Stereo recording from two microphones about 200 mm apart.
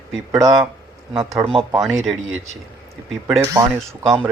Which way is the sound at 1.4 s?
30° right (ahead or behind).